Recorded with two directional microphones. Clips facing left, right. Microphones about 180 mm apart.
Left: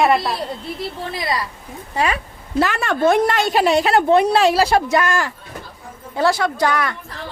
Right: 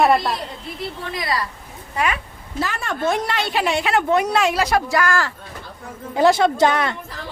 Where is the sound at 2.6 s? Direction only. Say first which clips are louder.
Left 6 dB; 75° left (ahead or behind); by 5.3 s 20° left (ahead or behind).